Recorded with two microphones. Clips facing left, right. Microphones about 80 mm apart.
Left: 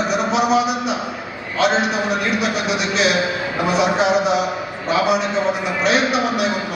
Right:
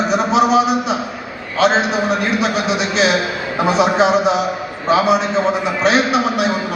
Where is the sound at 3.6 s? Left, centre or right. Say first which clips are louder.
Right 4 dB; right.